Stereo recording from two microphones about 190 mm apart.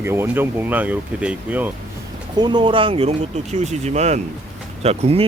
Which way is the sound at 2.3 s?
25° right (ahead or behind).